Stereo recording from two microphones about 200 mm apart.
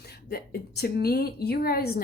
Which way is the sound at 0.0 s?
50° left (ahead or behind).